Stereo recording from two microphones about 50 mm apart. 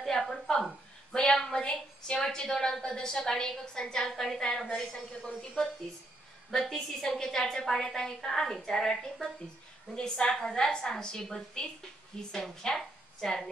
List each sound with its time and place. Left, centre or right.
0.0 s a sound: centre
1.1 s a woman's voice: centre
6.5 s a woman's voice: centre
12.7 s a woman's voice: centre